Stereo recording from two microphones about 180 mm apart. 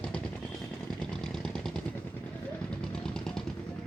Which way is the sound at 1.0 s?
5° left (ahead or behind).